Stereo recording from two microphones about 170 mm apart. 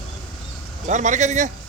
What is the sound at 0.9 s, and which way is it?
Speech, 45° right (ahead or behind).